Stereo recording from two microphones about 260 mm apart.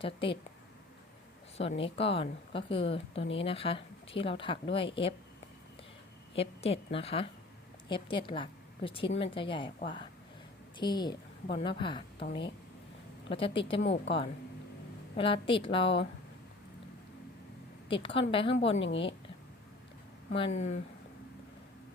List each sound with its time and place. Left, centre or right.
0.0 s a woman's voice: centre
1.5 s a woman's voice: left
6.3 s a woman's voice: left
13.3 s a woman's voice: centre
17.8 s a woman's voice: centre
18.8 s a woman's voice: left
20.3 s a woman's voice: left